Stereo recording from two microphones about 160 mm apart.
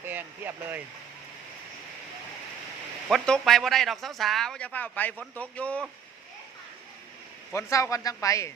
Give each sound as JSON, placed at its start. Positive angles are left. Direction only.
{"t": 0.0, "sound": "speech", "side_deg": -10}
{"t": 3.1, "sound": "speech", "side_deg": 5}
{"t": 7.5, "sound": "a man's voice", "side_deg": 20}